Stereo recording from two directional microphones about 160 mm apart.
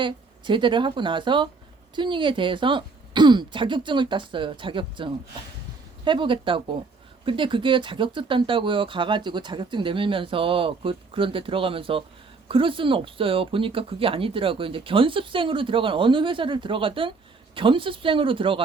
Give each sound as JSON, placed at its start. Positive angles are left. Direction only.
{"t": 0.0, "sound": "speech", "side_deg": -30}